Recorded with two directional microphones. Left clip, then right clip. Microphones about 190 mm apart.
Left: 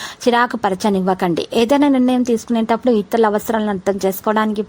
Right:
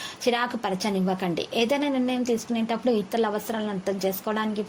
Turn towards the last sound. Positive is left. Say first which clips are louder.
# left 10 dB
turn(degrees=45)  # may be behind; listen again after turning